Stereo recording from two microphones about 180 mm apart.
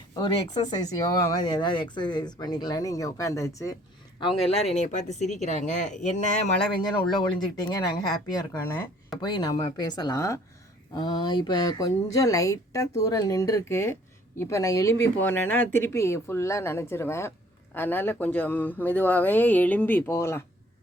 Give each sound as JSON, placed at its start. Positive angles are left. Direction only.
{"t": 1.3, "sound": "speech", "side_deg": 25}
{"t": 4.2, "sound": "speech", "side_deg": 30}
{"t": 6.7, "sound": "a woman's voice", "side_deg": 25}